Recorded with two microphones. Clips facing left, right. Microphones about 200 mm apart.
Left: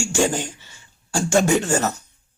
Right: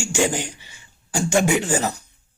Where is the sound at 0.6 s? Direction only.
15° right (ahead or behind).